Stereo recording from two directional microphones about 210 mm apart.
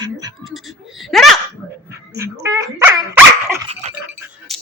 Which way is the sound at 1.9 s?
15° right (ahead or behind).